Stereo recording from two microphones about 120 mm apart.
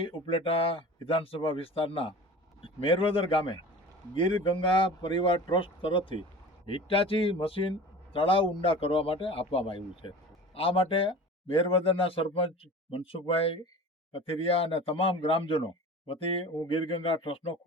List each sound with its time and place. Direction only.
0.0 s a man's voice: 50° left (ahead or behind)